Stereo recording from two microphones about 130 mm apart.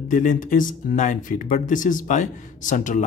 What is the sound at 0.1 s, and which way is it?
Speech, 80° left.